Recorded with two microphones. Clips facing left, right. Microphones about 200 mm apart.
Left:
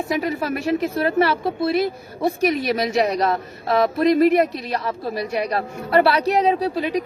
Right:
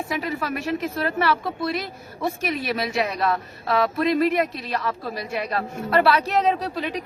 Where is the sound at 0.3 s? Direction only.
40° left (ahead or behind).